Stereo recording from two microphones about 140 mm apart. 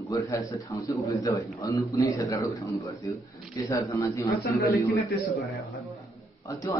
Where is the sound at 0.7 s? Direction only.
20° left (ahead or behind).